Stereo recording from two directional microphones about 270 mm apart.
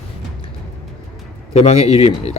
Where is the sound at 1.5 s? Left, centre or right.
Left.